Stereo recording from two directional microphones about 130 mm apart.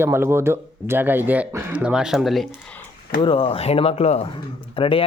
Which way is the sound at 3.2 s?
45° left (ahead or behind).